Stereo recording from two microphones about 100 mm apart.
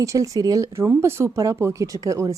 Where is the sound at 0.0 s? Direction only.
35° right (ahead or behind).